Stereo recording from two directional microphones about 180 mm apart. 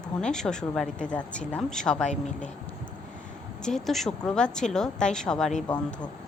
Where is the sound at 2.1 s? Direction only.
45° left (ahead or behind).